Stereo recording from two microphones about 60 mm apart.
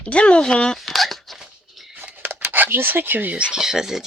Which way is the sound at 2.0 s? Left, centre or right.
Right.